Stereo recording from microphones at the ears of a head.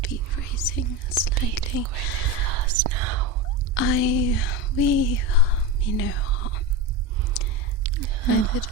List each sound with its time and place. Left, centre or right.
0.0 s whispering: left
2.5 s whispering: right
3.8 s a sound: left
7.9 s biting: right